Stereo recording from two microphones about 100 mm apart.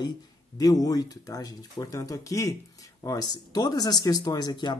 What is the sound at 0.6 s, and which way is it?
Speech, 40° left (ahead or behind).